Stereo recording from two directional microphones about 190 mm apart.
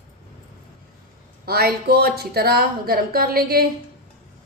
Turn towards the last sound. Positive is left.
turn(degrees=-50)  # may be behind; listen again after turning